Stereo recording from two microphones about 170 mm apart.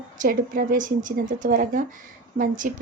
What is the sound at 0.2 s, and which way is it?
Speech, 55° right (ahead or behind).